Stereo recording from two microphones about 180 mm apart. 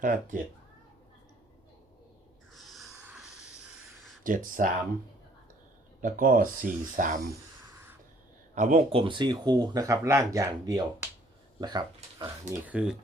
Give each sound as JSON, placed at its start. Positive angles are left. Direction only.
{"t": 0.0, "sound": "speech", "side_deg": -50}
{"t": 2.6, "sound": "a sound", "side_deg": 0}
{"t": 4.2, "sound": "speech", "side_deg": -50}
{"t": 6.0, "sound": "speech", "side_deg": -45}
{"t": 8.5, "sound": "speech", "side_deg": -40}
{"t": 12.5, "sound": "speech", "side_deg": -10}